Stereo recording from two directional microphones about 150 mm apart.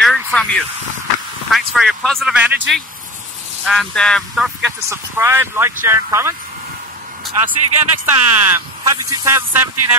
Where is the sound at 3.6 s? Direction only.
5° left (ahead or behind).